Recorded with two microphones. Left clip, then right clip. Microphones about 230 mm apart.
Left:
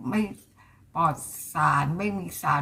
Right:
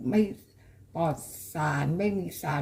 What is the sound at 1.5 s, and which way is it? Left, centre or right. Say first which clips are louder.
Speech: left 6 dB; left.